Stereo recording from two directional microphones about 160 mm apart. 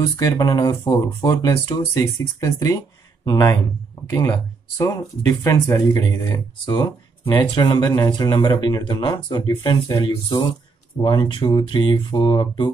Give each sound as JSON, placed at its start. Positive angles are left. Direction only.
{"t": 0.0, "sound": "speech", "side_deg": 20}